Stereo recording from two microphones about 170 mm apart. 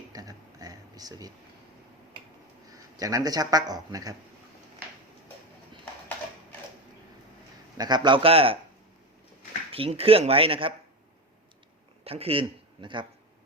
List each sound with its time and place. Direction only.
0.1 s a sound: 20° right (ahead or behind)
2.6 s speech: 20° right (ahead or behind)
7.8 s speech: 25° right (ahead or behind)
9.7 s speech: 35° right (ahead or behind)
12.0 s speech: 35° right (ahead or behind)